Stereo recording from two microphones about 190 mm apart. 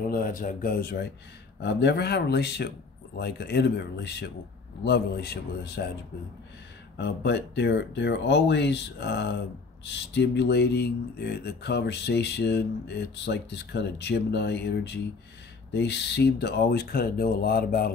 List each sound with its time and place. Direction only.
0.1 s speech: 45° left (ahead or behind)
7.0 s speech: 65° left (ahead or behind)